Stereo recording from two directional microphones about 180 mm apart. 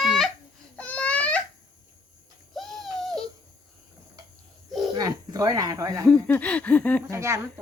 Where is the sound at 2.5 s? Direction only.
Centre (ahead or behind).